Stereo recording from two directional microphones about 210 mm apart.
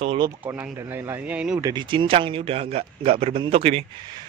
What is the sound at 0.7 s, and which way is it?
Speech, 10° right (ahead or behind).